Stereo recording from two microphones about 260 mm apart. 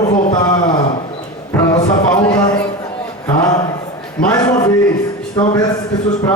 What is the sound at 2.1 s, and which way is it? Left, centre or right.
Speech, centre.